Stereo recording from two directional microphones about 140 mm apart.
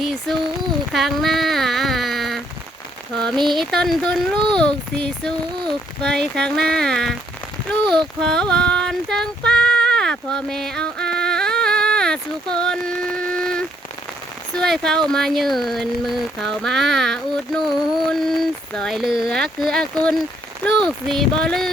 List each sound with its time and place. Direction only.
0.0 s speech: centre (ahead or behind)
0.9 s a sound: centre (ahead or behind)
3.4 s speech: centre (ahead or behind)
7.7 s child singing: 5° left (ahead or behind)
14.5 s speech: 5° left (ahead or behind)